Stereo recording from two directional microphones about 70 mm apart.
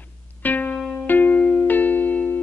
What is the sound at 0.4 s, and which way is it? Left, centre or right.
Music, left.